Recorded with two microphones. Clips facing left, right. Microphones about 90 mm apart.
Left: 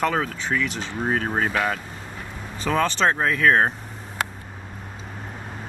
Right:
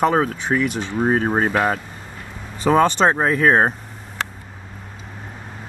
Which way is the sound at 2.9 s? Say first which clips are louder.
Right 4 dB; 20° right (ahead or behind).